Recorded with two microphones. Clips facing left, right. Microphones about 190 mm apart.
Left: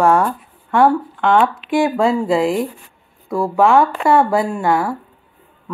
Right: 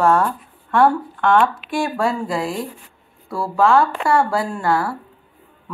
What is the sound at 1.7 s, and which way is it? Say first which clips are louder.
Speech: left 5 dB; 20° left (ahead or behind).